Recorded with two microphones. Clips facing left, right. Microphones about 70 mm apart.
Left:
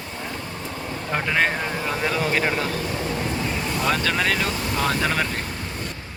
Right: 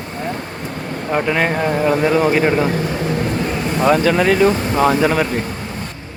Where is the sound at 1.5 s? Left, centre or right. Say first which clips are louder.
Right 10 dB; right.